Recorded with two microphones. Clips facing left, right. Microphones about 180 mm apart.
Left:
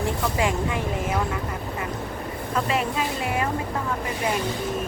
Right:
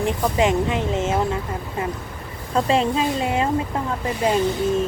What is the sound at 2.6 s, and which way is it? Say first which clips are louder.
Speech: right 6 dB; 30° right (ahead or behind).